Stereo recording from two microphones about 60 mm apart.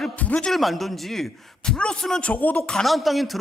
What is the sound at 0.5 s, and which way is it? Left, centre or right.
A man's voice, centre.